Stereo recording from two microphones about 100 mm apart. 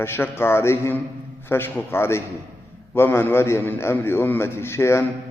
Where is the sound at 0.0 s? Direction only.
25° left (ahead or behind).